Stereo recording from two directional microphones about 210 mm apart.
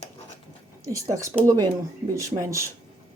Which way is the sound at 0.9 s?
15° right (ahead or behind).